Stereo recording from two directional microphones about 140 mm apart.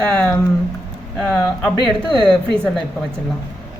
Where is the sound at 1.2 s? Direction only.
5° left (ahead or behind).